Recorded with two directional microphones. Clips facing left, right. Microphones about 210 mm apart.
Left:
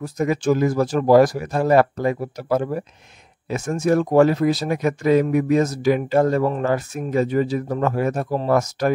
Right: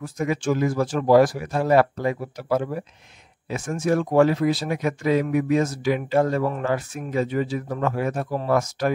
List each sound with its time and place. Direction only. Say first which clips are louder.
0.0 s speech: left 4 dB; 40° left (ahead or behind)